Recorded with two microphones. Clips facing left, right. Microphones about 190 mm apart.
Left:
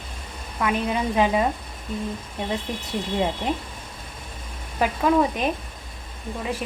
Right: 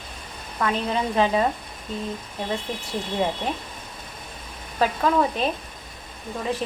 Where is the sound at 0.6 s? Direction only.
10° left (ahead or behind).